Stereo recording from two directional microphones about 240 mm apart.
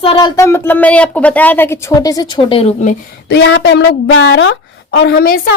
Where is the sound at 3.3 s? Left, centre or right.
Left.